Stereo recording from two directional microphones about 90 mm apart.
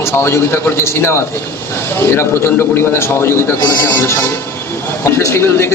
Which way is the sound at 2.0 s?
25° left (ahead or behind).